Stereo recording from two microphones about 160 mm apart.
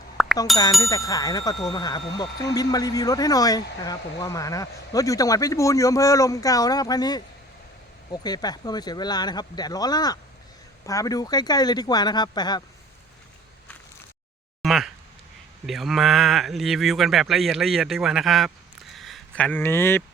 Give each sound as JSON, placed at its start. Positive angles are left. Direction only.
{"t": 0.2, "sound": "chink", "side_deg": 0}
{"t": 0.8, "sound": "speech", "side_deg": 20}
{"t": 14.6, "sound": "a sound", "side_deg": 0}
{"t": 15.6, "sound": "speech", "side_deg": 0}